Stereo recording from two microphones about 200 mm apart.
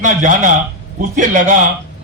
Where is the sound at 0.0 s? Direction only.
40° right (ahead or behind).